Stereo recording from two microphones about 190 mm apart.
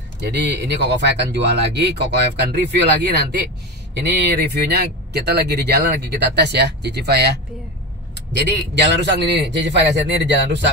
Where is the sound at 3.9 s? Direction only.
60° right (ahead or behind).